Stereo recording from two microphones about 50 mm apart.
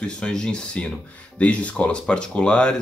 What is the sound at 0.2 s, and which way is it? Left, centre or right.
Speech, centre.